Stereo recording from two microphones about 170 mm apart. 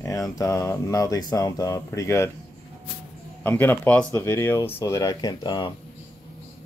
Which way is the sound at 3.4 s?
10° left (ahead or behind).